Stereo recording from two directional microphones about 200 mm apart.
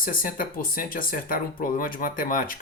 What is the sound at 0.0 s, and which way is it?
Speech, 45° left (ahead or behind).